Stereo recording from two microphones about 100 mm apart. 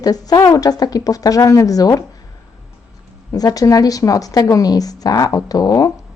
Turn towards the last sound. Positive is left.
turn(degrees=40)  # may be behind; listen again after turning